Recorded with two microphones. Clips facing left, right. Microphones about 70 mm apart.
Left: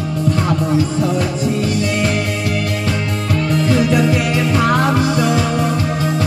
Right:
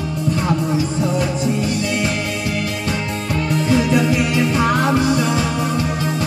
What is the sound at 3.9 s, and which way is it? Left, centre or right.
Music, left.